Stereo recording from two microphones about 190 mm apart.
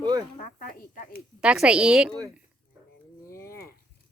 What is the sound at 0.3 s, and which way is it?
Speech, 45° left (ahead or behind).